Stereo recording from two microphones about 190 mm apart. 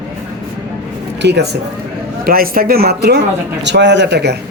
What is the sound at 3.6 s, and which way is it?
Speech, 65° right (ahead or behind).